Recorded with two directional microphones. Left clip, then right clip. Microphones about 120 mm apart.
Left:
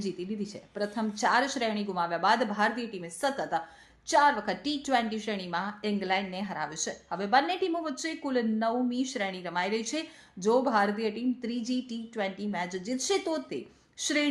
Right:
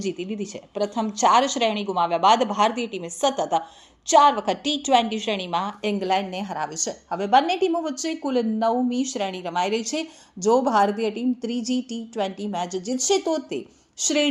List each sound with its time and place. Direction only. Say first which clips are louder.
0.0 s a woman's voice: right 6 dB; 20° right (ahead or behind)